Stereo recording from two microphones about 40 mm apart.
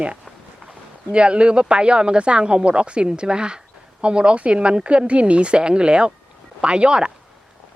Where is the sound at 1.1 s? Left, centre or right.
Right.